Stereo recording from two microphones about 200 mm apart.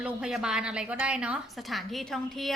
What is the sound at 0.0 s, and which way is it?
Speech, 5° right (ahead or behind).